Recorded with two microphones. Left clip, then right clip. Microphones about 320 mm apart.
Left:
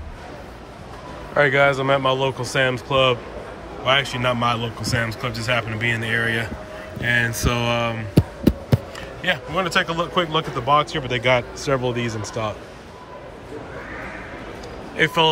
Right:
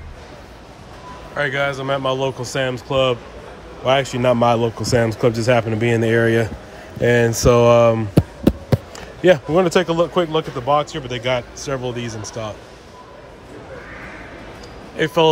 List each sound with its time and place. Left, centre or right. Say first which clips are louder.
1.3 s a man's voice: left 4 dB; centre; by 8.3 s right
9.3 s a man's voice: right 6 dB; right
15.0 s a man's voice: right 1 dB; centre